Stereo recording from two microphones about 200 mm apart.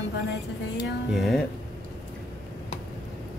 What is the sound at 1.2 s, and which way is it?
Speech, centre (ahead or behind).